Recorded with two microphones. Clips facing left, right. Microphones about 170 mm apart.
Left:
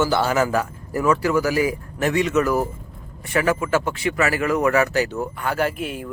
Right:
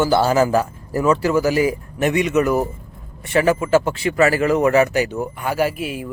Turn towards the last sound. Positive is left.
turn(degrees=-5)  # may be behind; listen again after turning